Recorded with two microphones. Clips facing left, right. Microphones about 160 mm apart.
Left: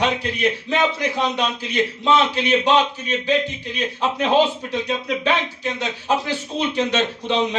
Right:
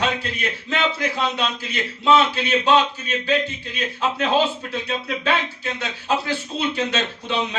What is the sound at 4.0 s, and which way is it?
A man's voice, 15° left (ahead or behind).